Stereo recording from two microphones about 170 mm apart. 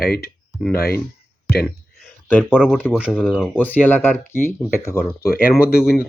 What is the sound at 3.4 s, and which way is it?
Speech, 10° left (ahead or behind).